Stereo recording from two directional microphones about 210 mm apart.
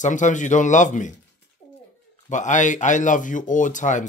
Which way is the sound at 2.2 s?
35° left (ahead or behind).